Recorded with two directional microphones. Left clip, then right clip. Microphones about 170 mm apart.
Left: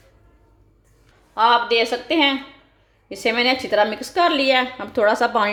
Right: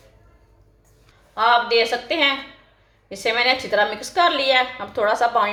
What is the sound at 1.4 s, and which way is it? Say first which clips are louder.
A woman's voice: left 1 dB; 40° left (ahead or behind).